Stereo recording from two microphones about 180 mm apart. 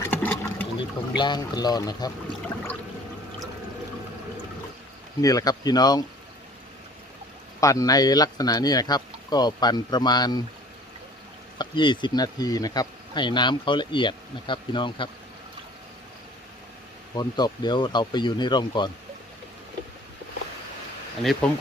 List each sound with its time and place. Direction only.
0.0 s boat: 10° left (ahead or behind)
0.8 s speech: 25° left (ahead or behind)
5.2 s speech: 20° left (ahead or behind)
7.6 s speech: 20° left (ahead or behind)
11.5 s speech: 25° left (ahead or behind)
17.2 s speech: 25° left (ahead or behind)
21.4 s speech: 5° left (ahead or behind)